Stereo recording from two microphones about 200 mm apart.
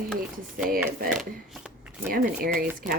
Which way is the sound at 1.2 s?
Centre (ahead or behind).